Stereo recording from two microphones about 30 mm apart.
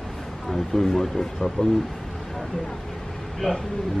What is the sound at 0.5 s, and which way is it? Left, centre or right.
Speech, centre.